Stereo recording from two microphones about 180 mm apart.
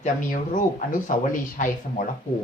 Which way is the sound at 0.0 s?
45° left (ahead or behind).